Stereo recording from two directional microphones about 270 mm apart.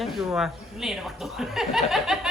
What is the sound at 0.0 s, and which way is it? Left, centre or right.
Speech, centre.